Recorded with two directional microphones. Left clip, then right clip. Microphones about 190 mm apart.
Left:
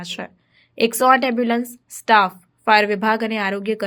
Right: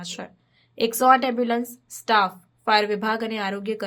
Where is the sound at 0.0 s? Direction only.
25° left (ahead or behind).